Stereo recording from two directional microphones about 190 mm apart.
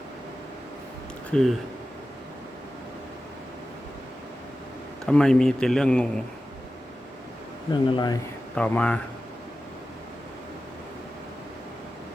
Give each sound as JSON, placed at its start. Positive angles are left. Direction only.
{"t": 1.3, "sound": "speech", "side_deg": 0}
{"t": 5.0, "sound": "speech", "side_deg": 5}
{"t": 7.7, "sound": "speech", "side_deg": 25}
{"t": 8.5, "sound": "speech", "side_deg": 5}